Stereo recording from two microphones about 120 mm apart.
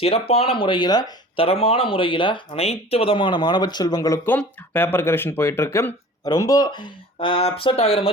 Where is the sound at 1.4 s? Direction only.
50° left (ahead or behind); by 4.2 s 30° left (ahead or behind).